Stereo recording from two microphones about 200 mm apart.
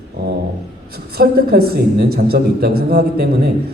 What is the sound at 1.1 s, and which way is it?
A man's voice, 50° right (ahead or behind).